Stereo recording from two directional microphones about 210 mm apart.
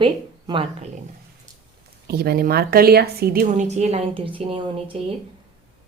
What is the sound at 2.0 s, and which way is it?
A woman's voice, 50° right (ahead or behind).